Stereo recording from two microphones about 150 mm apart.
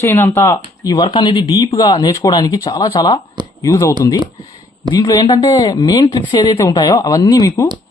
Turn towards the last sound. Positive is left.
turn(degrees=25)  # may be behind; listen again after turning